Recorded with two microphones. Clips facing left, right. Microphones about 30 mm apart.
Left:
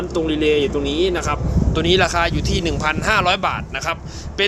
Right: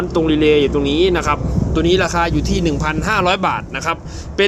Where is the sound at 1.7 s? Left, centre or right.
Left.